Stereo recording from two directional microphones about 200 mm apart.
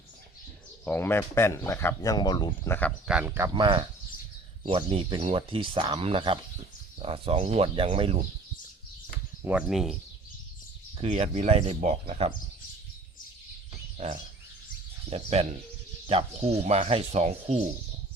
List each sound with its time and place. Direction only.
0.9 s speech: 10° left (ahead or behind)
2.6 s speech: 10° left (ahead or behind)
3.1 s speech: 5° right (ahead or behind)
3.5 s speech: 25° right (ahead or behind)
9.4 s speech: 5° right (ahead or behind)
10.9 s speech: 30° right (ahead or behind)
15.1 s speech: 30° right (ahead or behind)